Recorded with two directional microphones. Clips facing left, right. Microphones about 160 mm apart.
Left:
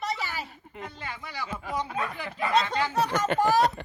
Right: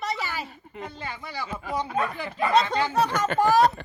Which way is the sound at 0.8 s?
30° right (ahead or behind).